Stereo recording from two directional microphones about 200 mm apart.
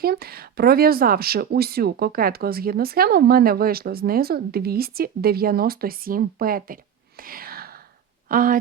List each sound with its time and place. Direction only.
0.0 s speech: 50° right (ahead or behind)
7.2 s whispering: 45° right (ahead or behind)
8.3 s speech: 45° right (ahead or behind)